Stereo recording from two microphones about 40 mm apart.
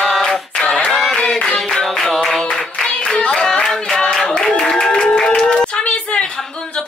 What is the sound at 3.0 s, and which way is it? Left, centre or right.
Clapping, left.